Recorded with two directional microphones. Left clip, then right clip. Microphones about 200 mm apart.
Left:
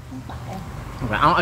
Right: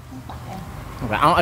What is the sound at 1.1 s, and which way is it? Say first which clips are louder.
Speech: right 1 dB; 15° right (ahead or behind).